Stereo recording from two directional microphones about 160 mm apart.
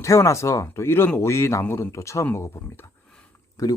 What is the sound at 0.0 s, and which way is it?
Speech, 20° left (ahead or behind).